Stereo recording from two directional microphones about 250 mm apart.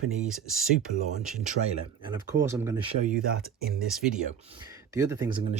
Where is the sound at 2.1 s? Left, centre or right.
Centre.